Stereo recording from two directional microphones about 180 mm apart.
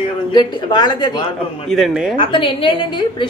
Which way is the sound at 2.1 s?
30° left (ahead or behind).